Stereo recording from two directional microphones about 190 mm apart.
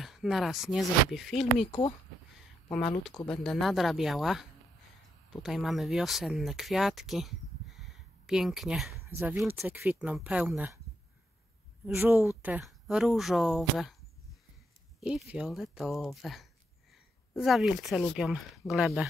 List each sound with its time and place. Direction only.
0.0 s speech: centre (ahead or behind)
1.7 s speech: 25° left (ahead or behind)
3.3 s speech: centre (ahead or behind)
11.8 s speech: 10° right (ahead or behind)
15.0 s speech: centre (ahead or behind)